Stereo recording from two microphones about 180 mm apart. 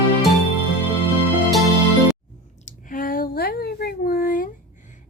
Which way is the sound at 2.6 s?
50° left (ahead or behind).